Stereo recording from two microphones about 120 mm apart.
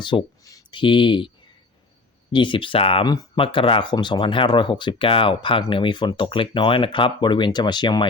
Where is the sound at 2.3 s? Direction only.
45° left (ahead or behind).